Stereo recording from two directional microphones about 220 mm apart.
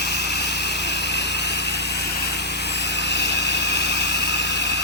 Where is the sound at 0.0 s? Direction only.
50° left (ahead or behind).